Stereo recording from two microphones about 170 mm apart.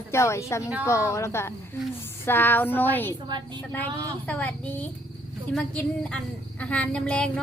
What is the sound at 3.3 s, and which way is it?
Speech, 25° right (ahead or behind).